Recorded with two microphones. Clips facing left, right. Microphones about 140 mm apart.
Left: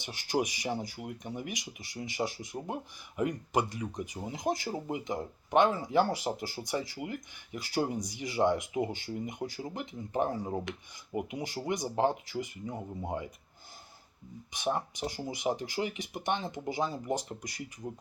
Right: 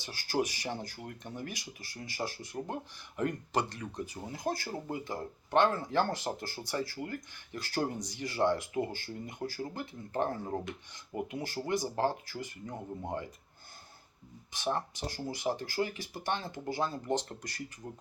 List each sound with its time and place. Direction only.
0.0 s speech: 20° left (ahead or behind)
14.5 s speech: 15° left (ahead or behind)